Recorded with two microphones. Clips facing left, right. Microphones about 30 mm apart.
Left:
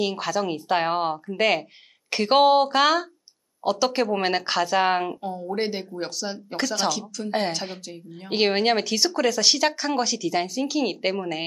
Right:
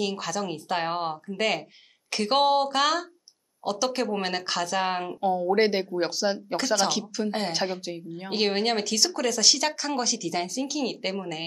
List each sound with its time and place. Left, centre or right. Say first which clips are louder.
0.0 s speech: left 4 dB; centre
5.2 s speech: right 5 dB; centre
7.2 s speech: left 4 dB; centre